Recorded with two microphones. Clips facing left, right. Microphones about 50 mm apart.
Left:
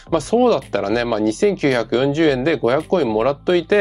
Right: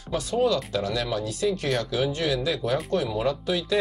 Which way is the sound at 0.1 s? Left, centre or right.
Left.